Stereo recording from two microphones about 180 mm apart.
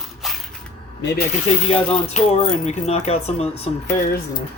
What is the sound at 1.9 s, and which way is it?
Speech, 35° left (ahead or behind).